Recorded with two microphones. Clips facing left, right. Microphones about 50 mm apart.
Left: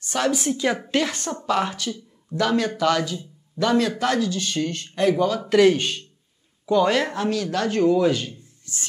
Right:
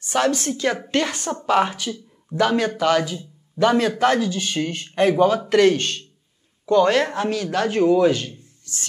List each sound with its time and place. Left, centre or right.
0.3 s speech: centre
0.9 s speech: centre
1.3 s speech: right
5.4 s speech: centre
8.7 s a sound: left